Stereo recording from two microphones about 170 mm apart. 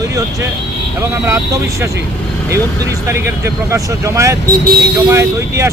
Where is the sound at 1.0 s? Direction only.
15° right (ahead or behind).